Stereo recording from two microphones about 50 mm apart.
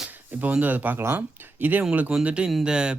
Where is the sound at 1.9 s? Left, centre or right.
Right.